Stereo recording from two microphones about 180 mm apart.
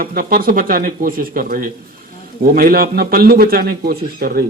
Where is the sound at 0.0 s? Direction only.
55° right (ahead or behind).